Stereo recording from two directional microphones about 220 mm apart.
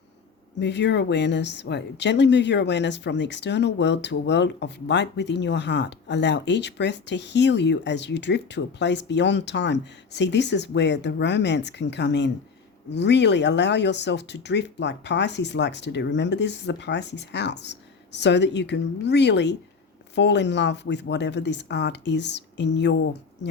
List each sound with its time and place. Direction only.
0.6 s a woman's voice: 50° left (ahead or behind)